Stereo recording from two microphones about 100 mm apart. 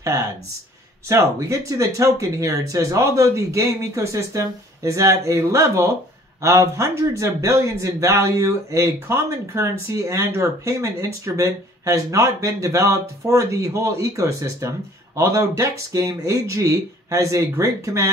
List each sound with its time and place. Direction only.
0.0 s speech: 30° right (ahead or behind)